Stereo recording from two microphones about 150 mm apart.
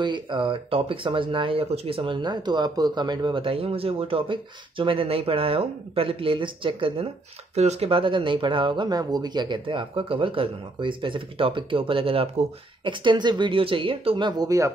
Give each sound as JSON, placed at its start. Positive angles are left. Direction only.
{"t": 0.0, "sound": "speech", "side_deg": -30}
{"t": 7.5, "sound": "speech", "side_deg": -45}